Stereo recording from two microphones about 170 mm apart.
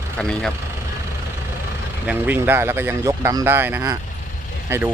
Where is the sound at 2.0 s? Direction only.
10° right (ahead or behind).